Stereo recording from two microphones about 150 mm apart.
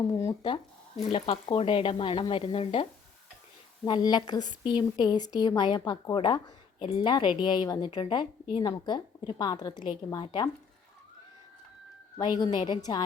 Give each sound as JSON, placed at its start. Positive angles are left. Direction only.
{"t": 0.1, "sound": "a woman's voice", "side_deg": 20}
{"t": 1.1, "sound": "speech", "side_deg": 35}
{"t": 3.8, "sound": "a woman's voice", "side_deg": 30}
{"t": 12.2, "sound": "a woman's voice", "side_deg": 25}